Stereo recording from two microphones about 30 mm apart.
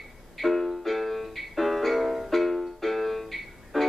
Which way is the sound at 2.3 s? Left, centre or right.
Centre.